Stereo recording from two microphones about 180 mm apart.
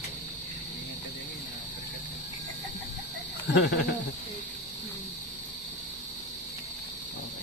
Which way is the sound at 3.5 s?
70° left (ahead or behind).